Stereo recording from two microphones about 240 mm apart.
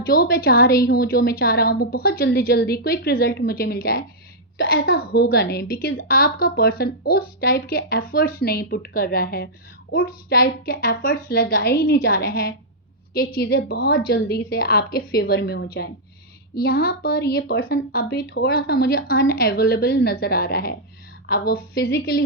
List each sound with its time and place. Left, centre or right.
0.0 s a woman's voice: left